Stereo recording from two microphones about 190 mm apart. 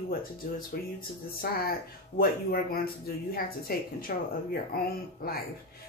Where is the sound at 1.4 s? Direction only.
50° left (ahead or behind).